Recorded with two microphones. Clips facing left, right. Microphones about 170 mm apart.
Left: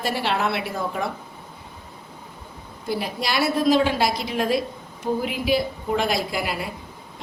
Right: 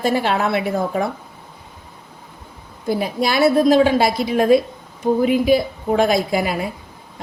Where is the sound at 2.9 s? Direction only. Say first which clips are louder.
Right 6 dB; 50° right (ahead or behind).